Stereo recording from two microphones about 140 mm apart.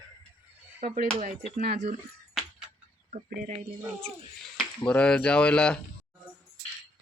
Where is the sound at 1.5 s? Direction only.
40° right (ahead or behind).